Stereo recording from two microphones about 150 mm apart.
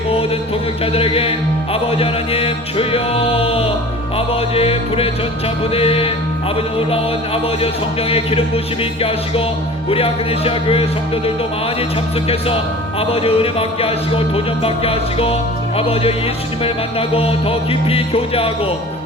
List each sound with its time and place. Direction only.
0.9 s music: 40° left (ahead or behind)
8.1 s music: 40° left (ahead or behind)
13.0 s music: 40° left (ahead or behind)
16.6 s music: 40° left (ahead or behind)